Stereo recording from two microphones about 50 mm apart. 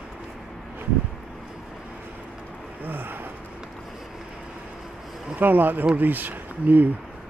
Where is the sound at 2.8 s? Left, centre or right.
Right.